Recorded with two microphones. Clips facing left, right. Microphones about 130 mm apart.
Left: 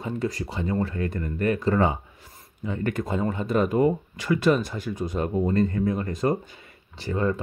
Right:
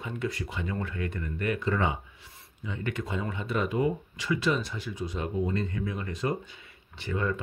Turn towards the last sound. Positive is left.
turn(degrees=35)  # may be behind; listen again after turning